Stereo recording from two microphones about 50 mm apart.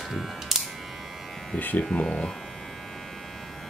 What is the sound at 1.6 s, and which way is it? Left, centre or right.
Speech, left.